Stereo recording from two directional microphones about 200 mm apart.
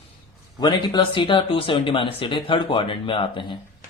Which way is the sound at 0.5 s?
20° left (ahead or behind).